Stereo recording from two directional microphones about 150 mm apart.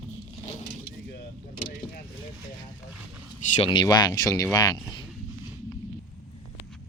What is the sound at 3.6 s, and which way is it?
Speech, 30° left (ahead or behind).